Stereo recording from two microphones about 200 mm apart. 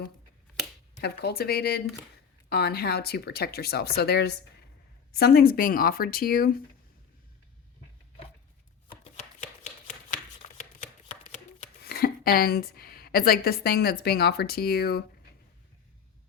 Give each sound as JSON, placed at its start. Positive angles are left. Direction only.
{"t": 1.0, "sound": "speech", "side_deg": 50}
{"t": 9.0, "sound": "chopping", "side_deg": 35}
{"t": 11.8, "sound": "a woman's voice", "side_deg": 50}